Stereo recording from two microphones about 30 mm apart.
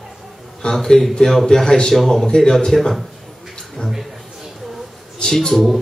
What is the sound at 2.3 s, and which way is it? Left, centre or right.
Speech, left.